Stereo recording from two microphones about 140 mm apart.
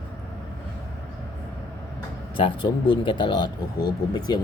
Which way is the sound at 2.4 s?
40° left (ahead or behind).